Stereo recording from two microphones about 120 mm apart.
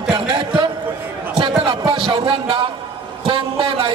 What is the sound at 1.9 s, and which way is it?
A man's voice, 50° right (ahead or behind).